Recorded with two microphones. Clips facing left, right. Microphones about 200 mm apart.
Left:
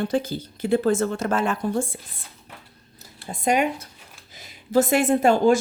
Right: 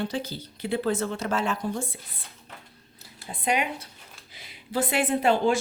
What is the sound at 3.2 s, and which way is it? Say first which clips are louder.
A woman's voice: left 5 dB; 45° left (ahead or behind).